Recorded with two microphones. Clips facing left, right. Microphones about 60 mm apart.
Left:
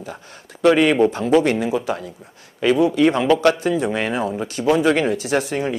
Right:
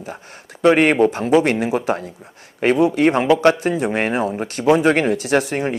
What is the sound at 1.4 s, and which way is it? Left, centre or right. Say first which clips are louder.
Speech: right 1 dB; right.